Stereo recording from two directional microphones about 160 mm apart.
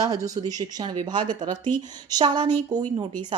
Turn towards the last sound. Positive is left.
turn(degrees=-25)  # may be behind; listen again after turning